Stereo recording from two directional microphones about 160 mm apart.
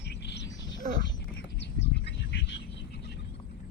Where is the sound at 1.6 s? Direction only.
90° left.